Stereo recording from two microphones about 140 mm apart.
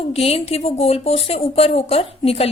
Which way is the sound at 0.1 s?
45° left (ahead or behind).